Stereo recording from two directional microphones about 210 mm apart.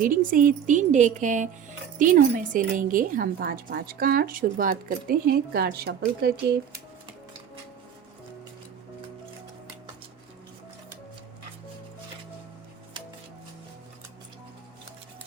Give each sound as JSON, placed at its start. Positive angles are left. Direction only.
{"t": 0.0, "sound": "a woman's voice", "side_deg": -40}